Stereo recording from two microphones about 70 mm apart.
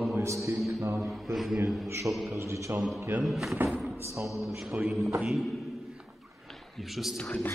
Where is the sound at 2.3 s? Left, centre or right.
Right.